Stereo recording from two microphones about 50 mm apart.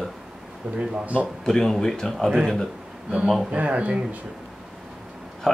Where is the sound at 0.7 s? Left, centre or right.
Right.